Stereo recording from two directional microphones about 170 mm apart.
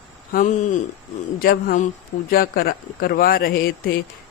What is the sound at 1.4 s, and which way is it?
Speech, 60° left (ahead or behind).